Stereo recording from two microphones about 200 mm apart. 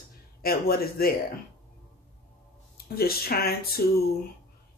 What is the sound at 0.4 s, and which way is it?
Speech, 50° left (ahead or behind).